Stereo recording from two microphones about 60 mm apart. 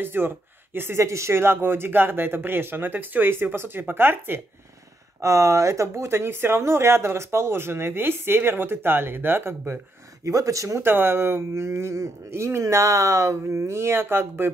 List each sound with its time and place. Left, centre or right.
0.0 s speech: right
5.2 s speech: right
10.2 s speech: right
10.8 s speech: right